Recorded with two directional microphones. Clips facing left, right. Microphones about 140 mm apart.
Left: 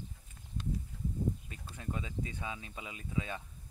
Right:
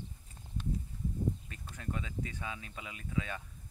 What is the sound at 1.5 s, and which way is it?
Speech, 20° left (ahead or behind).